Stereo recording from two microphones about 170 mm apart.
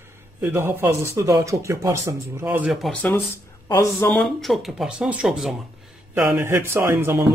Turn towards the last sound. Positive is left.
turn(degrees=-15)  # may be behind; listen again after turning